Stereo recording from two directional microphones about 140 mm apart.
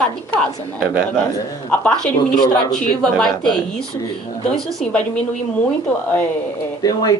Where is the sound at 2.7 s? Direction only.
5° left (ahead or behind).